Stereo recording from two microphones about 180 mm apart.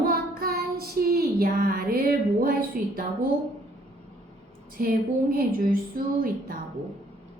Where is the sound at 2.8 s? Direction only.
50° right (ahead or behind).